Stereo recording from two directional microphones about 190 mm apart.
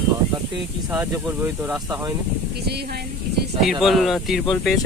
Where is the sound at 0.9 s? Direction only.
10° right (ahead or behind).